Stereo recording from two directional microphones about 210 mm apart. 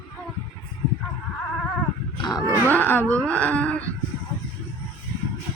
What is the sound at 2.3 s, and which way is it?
Speech, 10° left (ahead or behind).